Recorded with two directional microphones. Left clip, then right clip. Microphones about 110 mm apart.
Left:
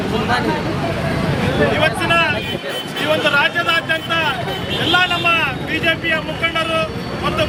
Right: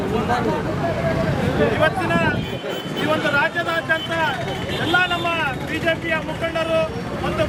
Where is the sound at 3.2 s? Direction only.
Centre (ahead or behind).